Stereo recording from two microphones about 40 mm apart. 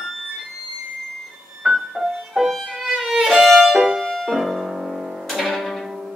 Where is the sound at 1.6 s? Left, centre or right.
Centre.